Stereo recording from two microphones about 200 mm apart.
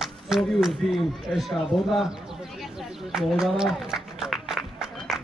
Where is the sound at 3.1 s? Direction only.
Centre (ahead or behind).